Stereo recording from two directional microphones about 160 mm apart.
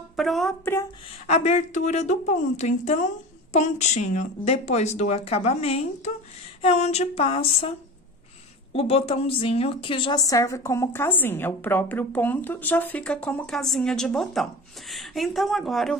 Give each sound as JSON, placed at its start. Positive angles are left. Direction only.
{"t": 0.1, "sound": "speech", "side_deg": 0}
{"t": 1.2, "sound": "speech", "side_deg": 45}
{"t": 8.7, "sound": "a woman's voice", "side_deg": 35}